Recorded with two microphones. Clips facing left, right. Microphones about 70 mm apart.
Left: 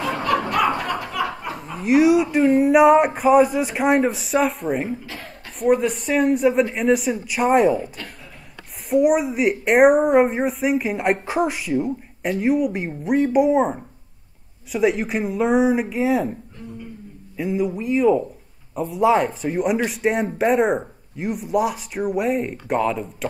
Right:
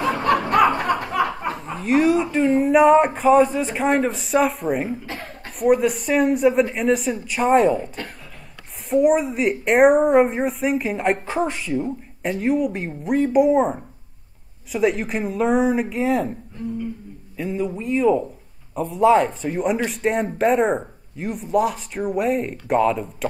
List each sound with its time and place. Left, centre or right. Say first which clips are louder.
0.0 s snicker: right 2 dB; right
0.8 s a sound: right 4 dB; right
1.7 s a woman's voice: left 3 dB; centre
17.4 s a woman's voice: left 2 dB; centre